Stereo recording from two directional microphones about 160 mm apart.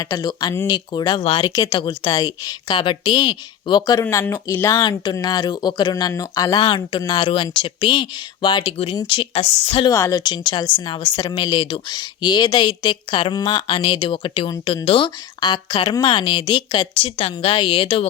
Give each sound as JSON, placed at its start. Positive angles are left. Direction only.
{"t": 0.0, "sound": "speech", "side_deg": 25}
{"t": 1.5, "sound": "speech", "side_deg": 25}
{"t": 9.9, "sound": "speech", "side_deg": 20}